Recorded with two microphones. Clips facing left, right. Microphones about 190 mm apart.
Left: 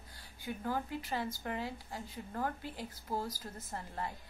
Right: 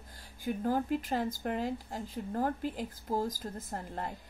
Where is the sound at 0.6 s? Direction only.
45° right (ahead or behind).